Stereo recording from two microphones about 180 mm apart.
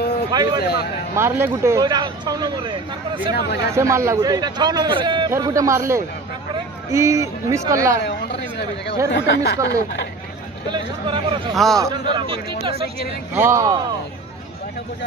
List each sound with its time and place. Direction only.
0.3 s a man's voice: 25° right (ahead or behind)
0.6 s speech: 60° left (ahead or behind)
1.1 s a man's voice: 15° right (ahead or behind)
3.3 s speech: 65° left (ahead or behind)
3.7 s a man's voice: 15° right (ahead or behind)
8.0 s a sound: 70° left (ahead or behind)
9.1 s speech: 65° left (ahead or behind)
10.7 s a man's voice: 30° right (ahead or behind)
11.5 s a man's voice: centre (ahead or behind)
11.8 s a man's voice: 25° right (ahead or behind)
13.3 s speech: 15° right (ahead or behind)